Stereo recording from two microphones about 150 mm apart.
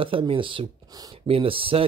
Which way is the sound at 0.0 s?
35° right (ahead or behind).